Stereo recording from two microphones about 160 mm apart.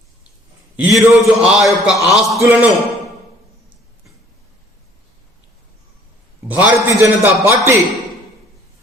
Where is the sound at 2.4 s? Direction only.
10° right (ahead or behind).